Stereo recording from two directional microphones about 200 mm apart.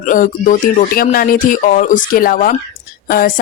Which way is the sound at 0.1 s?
40° left (ahead or behind).